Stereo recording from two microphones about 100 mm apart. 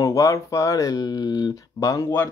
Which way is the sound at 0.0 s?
35° left (ahead or behind).